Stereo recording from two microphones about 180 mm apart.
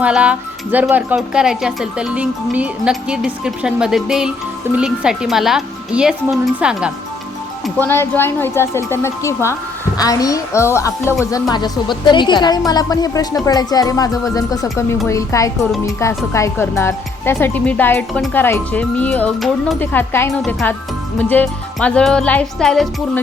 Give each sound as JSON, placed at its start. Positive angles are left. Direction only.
{"t": 0.0, "sound": "speech", "side_deg": -5}
{"t": 7.8, "sound": "a woman's voice", "side_deg": 10}